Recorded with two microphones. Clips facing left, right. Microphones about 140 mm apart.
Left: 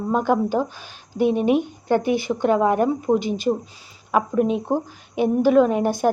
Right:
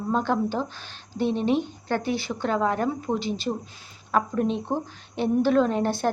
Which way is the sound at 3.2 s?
50° left (ahead or behind).